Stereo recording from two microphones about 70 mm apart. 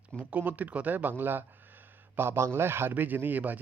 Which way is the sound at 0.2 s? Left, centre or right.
Right.